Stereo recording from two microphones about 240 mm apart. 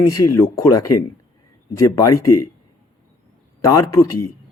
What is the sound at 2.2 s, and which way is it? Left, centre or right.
Speech, left.